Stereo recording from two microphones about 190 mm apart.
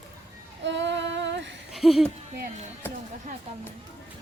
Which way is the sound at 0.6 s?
70° right (ahead or behind).